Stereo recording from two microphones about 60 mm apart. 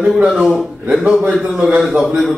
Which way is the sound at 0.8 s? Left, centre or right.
Centre.